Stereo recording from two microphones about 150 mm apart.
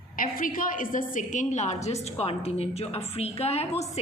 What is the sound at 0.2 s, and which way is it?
A woman's voice, 70° left (ahead or behind).